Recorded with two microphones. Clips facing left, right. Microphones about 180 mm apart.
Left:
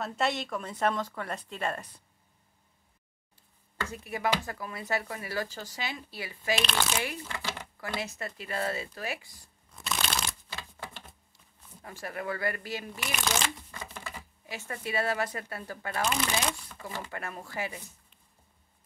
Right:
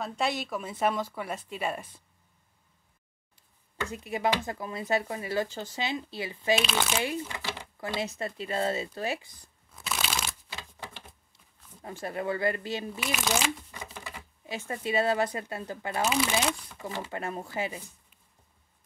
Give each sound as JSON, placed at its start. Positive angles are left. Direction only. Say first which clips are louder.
{"t": 0.0, "sound": "speech", "louder": "even", "side_deg": 0}
{"t": 3.9, "sound": "speech", "louder": "right 2 dB", "side_deg": -20}
{"t": 6.5, "sound": "speech", "louder": "right 3 dB", "side_deg": -5}
{"t": 7.0, "sound": "speech", "louder": "right 3 dB", "side_deg": -20}
{"t": 9.7, "sound": "shuffling cards", "louder": "even", "side_deg": -5}
{"t": 11.8, "sound": "speech", "louder": "right 4 dB", "side_deg": -25}
{"t": 13.0, "sound": "speech", "louder": "right 2 dB", "side_deg": -5}
{"t": 14.4, "sound": "speech", "louder": "right 4 dB", "side_deg": -25}
{"t": 16.0, "sound": "speech", "louder": "right 3 dB", "side_deg": -5}
{"t": 16.8, "sound": "speech", "louder": "right 4 dB", "side_deg": -25}